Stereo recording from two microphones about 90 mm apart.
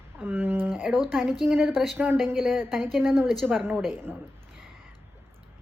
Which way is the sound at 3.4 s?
15° right (ahead or behind).